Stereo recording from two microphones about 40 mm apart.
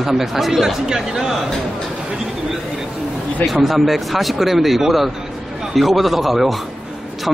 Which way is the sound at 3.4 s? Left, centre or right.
Centre.